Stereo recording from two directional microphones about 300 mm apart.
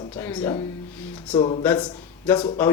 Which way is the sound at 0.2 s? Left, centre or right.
Centre.